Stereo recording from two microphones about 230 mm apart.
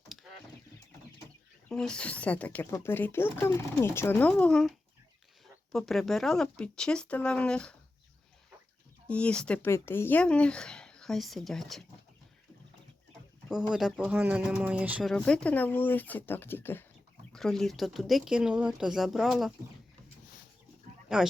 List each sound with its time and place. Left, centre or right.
1.7 s speech: centre
5.7 s speech: centre
9.0 s speech: centre
13.5 s speech: centre
21.1 s speech: centre